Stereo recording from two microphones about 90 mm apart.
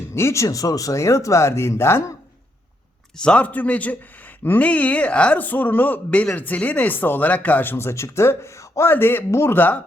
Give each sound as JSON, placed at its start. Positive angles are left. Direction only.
{"t": 0.1, "sound": "speech", "side_deg": 30}
{"t": 3.2, "sound": "speech", "side_deg": 10}